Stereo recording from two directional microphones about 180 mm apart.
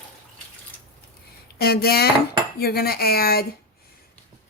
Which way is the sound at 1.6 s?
60° left (ahead or behind).